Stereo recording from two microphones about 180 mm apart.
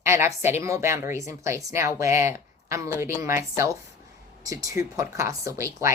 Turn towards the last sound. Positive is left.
turn(degrees=-15)  # may be behind; listen again after turning